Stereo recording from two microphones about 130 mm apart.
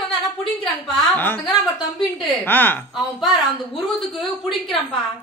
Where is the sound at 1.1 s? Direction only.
15° left (ahead or behind).